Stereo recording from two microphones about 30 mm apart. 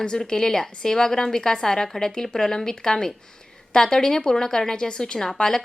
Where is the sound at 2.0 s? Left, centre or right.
Left.